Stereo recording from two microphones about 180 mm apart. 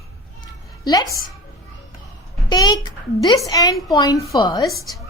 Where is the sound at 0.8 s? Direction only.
20° left (ahead or behind).